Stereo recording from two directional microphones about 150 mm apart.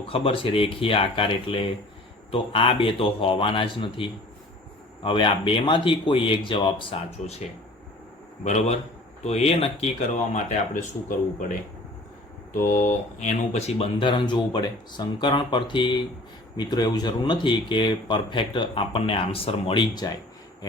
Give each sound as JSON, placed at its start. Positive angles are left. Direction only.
{"t": 0.0, "sound": "speech", "side_deg": 40}
{"t": 8.4, "sound": "speech", "side_deg": 50}
{"t": 11.1, "sound": "speech", "side_deg": 60}
{"t": 12.5, "sound": "speech", "side_deg": 60}
{"t": 13.1, "sound": "speech", "side_deg": 50}